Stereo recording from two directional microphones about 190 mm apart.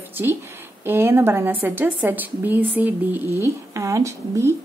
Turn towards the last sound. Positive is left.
turn(degrees=-15)  # may be behind; listen again after turning